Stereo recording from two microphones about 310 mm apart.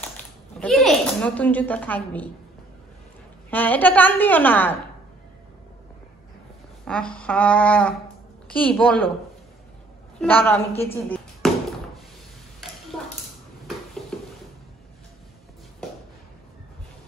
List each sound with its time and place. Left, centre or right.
0.6 s a woman's voice: centre
3.4 s a woman's voice: centre
6.8 s a woman's voice: centre
10.1 s a woman's voice: centre
10.7 s a woman's voice: centre
11.1 s chop: centre
14.1 s music: centre